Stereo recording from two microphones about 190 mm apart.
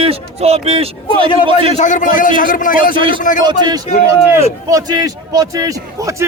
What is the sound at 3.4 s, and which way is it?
A man's voice, 20° right (ahead or behind).